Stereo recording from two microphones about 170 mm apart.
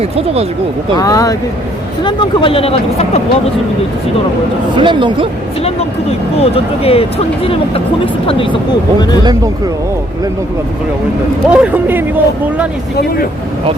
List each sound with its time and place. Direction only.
0.9 s speech: 20° left (ahead or behind); by 3.2 s 35° left (ahead or behind)
4.8 s speech: 30° right (ahead or behind)
5.6 s speech: 35° left (ahead or behind)
11.4 s speech: 10° right (ahead or behind)